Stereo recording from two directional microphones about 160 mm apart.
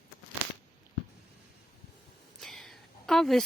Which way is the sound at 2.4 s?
Centre (ahead or behind).